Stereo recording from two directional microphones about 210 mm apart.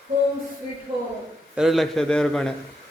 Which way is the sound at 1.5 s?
Centre (ahead or behind).